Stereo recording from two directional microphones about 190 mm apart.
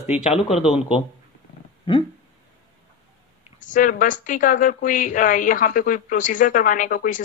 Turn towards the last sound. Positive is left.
turn(degrees=45)  # may be behind; listen again after turning